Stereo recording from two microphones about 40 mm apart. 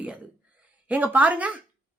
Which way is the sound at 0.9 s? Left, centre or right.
Right.